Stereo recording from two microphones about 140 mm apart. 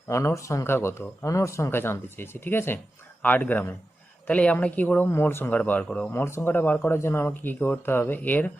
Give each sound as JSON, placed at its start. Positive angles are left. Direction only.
{"t": 0.1, "sound": "speech", "side_deg": 20}